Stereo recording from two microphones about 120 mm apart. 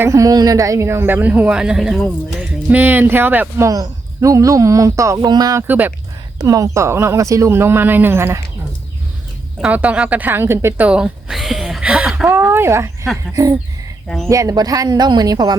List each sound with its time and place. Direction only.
0.0 s a woman's voice: 25° right (ahead or behind); by 2.0 s 5° right (ahead or behind)
2.5 s a woman's voice: 15° right (ahead or behind)
3.7 s speech: 30° right (ahead or behind)
5.6 s a woman's voice: 15° right (ahead or behind)
6.4 s speech: 30° right (ahead or behind)
9.6 s a woman's voice: 10° right (ahead or behind)
12.3 s a sound: 20° right (ahead or behind)
14.3 s speech: 25° right (ahead or behind)